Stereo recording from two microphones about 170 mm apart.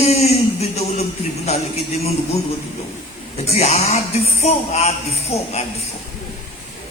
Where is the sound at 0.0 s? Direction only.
40° left (ahead or behind).